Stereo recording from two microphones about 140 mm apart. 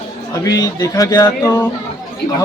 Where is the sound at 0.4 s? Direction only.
25° left (ahead or behind).